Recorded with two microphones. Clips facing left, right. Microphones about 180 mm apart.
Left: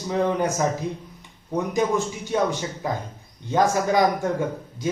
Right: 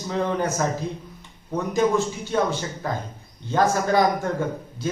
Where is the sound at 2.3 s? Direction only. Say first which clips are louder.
Even; 15° left (ahead or behind).